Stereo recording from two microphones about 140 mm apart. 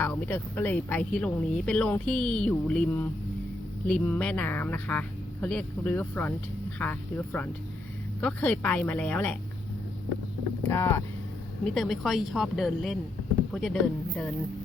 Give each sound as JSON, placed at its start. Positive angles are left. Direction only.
{"t": 0.0, "sound": "speech", "side_deg": 15}
{"t": 8.2, "sound": "speech", "side_deg": 10}
{"t": 10.6, "sound": "speech", "side_deg": 15}
{"t": 11.6, "sound": "speech", "side_deg": 5}